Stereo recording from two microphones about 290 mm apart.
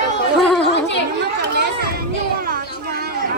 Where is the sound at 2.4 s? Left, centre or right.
Right.